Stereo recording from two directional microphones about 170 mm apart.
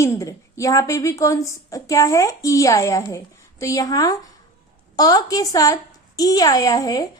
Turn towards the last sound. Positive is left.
turn(degrees=20)  # may be behind; listen again after turning